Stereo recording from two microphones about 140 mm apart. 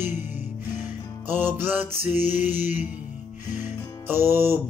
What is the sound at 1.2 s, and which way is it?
Music, 15° right (ahead or behind).